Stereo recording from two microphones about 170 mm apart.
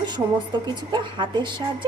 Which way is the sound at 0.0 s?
25° right (ahead or behind).